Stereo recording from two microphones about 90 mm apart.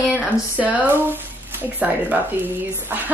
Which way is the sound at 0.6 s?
15° right (ahead or behind).